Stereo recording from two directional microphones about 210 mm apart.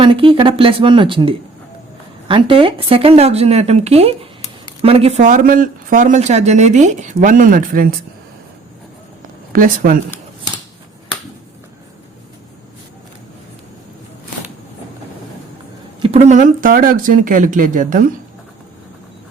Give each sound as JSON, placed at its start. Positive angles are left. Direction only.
{"t": 0.0, "sound": "speech", "side_deg": -25}
{"t": 9.5, "sound": "speech", "side_deg": -40}
{"t": 16.0, "sound": "speech", "side_deg": -30}